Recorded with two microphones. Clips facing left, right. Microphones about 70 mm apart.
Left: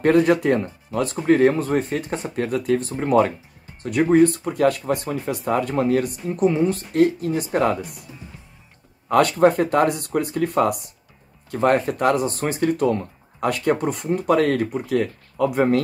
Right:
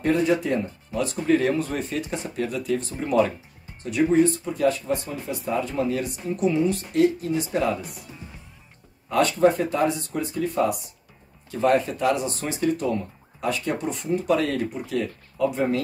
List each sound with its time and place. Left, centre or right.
0.0 s speech: left
9.1 s speech: left
11.5 s speech: left